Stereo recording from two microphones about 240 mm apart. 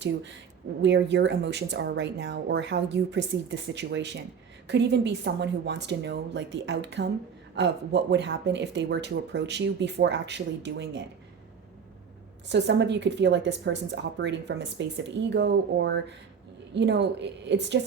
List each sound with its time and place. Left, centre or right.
0.8 s speech: right
12.5 s speech: right